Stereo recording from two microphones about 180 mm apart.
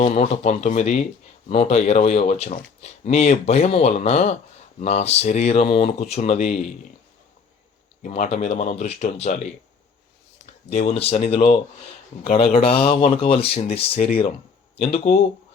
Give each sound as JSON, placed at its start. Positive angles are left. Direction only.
{"t": 0.0, "sound": "speech", "side_deg": 35}
{"t": 8.0, "sound": "speech", "side_deg": 40}